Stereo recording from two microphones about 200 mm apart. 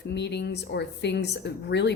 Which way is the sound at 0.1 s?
60° left (ahead or behind).